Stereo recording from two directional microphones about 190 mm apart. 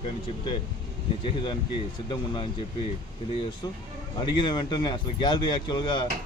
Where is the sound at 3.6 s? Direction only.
25° left (ahead or behind).